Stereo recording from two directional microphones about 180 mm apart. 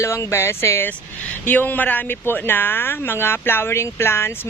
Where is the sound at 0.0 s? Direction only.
15° left (ahead or behind).